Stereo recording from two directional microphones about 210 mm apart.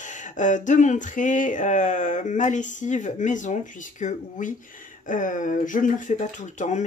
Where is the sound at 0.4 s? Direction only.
35° left (ahead or behind).